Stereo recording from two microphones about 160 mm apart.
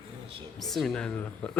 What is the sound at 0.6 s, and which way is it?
Speech, centre (ahead or behind).